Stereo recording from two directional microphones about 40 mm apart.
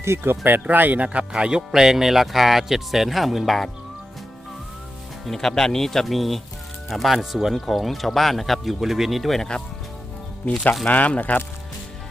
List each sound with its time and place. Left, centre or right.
0.0 s speech: right
0.7 s speech: right
1.0 s speech: right
1.7 s speech: centre
5.4 s speech: centre
9.4 s speech: left
10.8 s speech: left